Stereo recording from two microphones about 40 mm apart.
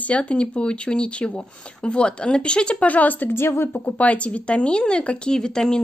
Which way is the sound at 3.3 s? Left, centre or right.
Left.